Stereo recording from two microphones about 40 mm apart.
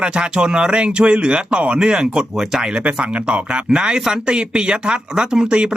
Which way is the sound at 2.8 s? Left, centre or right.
Right.